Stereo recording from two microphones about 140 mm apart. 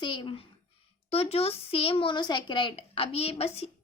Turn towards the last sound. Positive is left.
turn(degrees=45)  # may be behind; listen again after turning